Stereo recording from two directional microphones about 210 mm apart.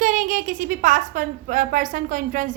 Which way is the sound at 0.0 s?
40° right (ahead or behind).